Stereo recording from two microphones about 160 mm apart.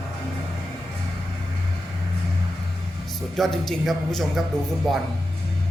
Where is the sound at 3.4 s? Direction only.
Centre (ahead or behind).